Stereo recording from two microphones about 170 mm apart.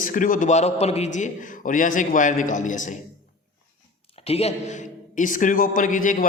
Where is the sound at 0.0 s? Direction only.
50° left (ahead or behind).